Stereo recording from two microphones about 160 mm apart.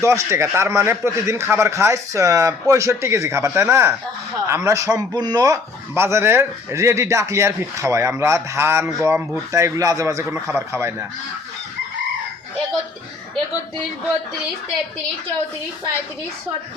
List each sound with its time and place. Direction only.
0.0 s a man's voice: 15° right (ahead or behind)